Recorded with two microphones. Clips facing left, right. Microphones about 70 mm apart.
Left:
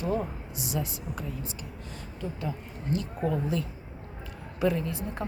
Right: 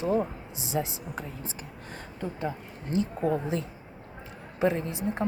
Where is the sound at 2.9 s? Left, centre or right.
Right.